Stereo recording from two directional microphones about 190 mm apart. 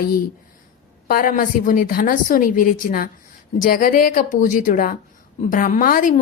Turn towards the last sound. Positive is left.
turn(degrees=45)  # may be behind; listen again after turning